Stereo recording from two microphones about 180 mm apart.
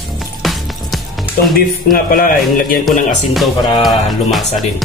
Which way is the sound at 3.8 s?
Centre (ahead or behind).